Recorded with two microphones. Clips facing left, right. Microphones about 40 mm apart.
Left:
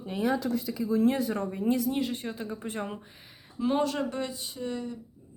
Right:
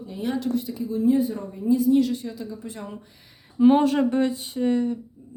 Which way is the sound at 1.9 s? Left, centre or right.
Left.